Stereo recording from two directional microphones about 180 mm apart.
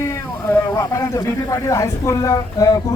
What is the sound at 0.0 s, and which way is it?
Speech, 15° left (ahead or behind).